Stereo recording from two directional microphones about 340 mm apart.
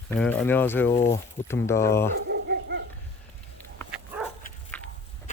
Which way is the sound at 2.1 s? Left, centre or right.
Right.